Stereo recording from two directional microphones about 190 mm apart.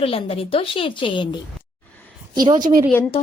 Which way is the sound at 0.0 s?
30° left (ahead or behind).